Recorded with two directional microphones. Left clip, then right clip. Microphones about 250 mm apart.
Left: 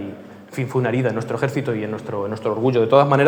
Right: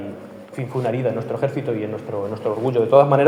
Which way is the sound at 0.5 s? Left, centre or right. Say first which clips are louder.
Left 2 dB; left.